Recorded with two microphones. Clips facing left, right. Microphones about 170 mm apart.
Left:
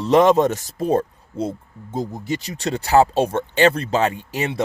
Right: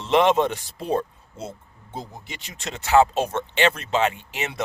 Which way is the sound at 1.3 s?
30° left (ahead or behind).